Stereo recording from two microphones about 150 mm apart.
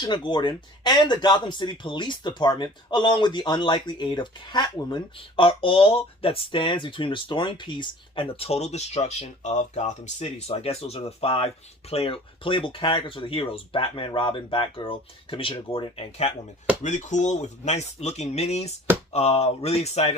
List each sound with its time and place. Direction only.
0.0 s speech: 30° left (ahead or behind)
16.8 s speech: 55° left (ahead or behind)